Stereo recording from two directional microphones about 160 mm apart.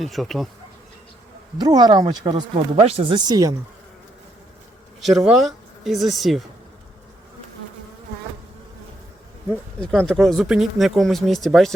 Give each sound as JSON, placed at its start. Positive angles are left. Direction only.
{"t": 0.0, "sound": "speech", "side_deg": 0}
{"t": 1.5, "sound": "speech", "side_deg": -25}
{"t": 2.8, "sound": "speech", "side_deg": -40}
{"t": 3.2, "sound": "speech", "side_deg": -20}
{"t": 4.9, "sound": "speech", "side_deg": 0}
{"t": 9.8, "sound": "speech", "side_deg": 5}